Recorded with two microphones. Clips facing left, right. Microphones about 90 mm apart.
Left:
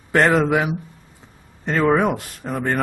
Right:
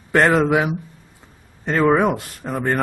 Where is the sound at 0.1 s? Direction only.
Centre (ahead or behind).